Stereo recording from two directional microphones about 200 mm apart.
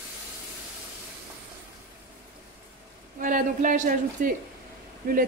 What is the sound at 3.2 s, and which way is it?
Speech, 40° right (ahead or behind).